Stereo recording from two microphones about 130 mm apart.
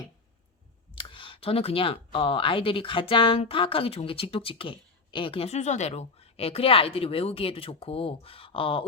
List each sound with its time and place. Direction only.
0.9 s speech: 40° left (ahead or behind)